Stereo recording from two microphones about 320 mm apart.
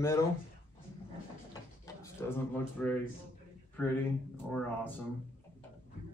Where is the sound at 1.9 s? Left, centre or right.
Centre.